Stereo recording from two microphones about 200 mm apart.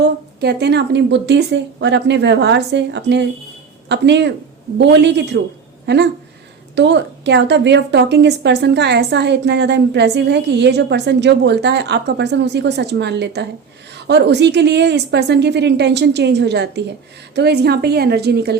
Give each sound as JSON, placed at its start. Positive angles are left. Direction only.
{"t": 0.0, "sound": "a woman's voice", "side_deg": -55}